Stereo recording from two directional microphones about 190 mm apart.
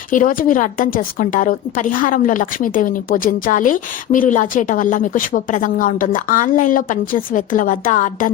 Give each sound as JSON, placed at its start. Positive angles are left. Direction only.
{"t": 0.1, "sound": "a woman's voice", "side_deg": 45}